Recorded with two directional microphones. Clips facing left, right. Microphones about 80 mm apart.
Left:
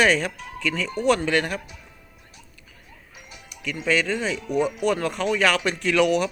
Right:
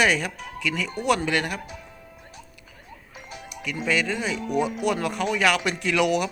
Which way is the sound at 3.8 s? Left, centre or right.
Centre.